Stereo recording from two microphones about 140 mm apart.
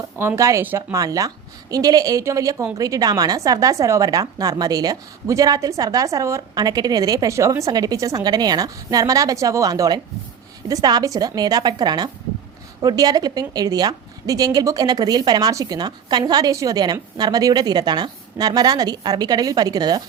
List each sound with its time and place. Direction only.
0.2 s a woman's voice: 20° right (ahead or behind)